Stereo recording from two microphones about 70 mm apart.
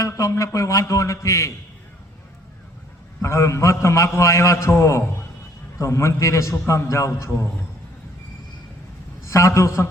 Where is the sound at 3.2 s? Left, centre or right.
Left.